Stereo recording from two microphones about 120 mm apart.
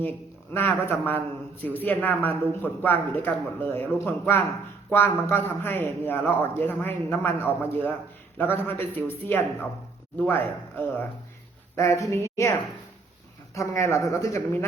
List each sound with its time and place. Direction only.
0.5 s speech: 15° left (ahead or behind)